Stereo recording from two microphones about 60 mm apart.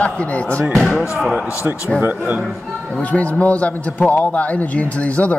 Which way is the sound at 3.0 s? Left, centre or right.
Left.